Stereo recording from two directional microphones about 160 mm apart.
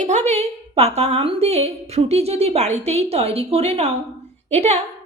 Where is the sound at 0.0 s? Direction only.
45° right (ahead or behind).